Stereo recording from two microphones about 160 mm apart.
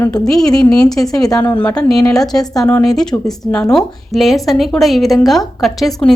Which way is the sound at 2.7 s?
5° left (ahead or behind).